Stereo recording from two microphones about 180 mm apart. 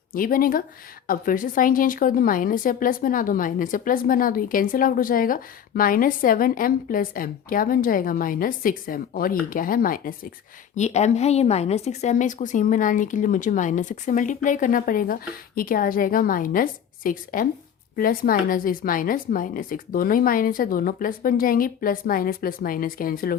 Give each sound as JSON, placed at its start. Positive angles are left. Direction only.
{"t": 0.1, "sound": "a woman's voice", "side_deg": 50}
{"t": 10.8, "sound": "a woman's voice", "side_deg": 40}